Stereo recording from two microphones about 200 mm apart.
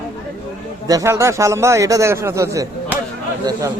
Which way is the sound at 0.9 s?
15° right (ahead or behind).